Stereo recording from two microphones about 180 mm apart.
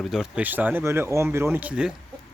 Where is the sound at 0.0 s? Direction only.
Centre (ahead or behind).